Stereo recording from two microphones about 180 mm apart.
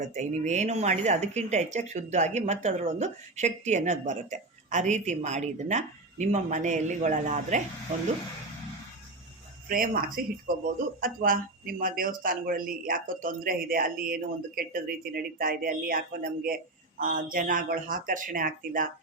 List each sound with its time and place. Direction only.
0.0 s speech: 40° right (ahead or behind)
9.6 s a woman's voice: 50° right (ahead or behind)